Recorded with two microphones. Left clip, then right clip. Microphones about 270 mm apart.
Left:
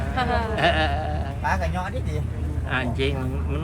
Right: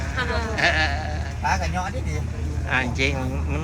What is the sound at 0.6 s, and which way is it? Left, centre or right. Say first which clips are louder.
Speech: right 2 dB; centre.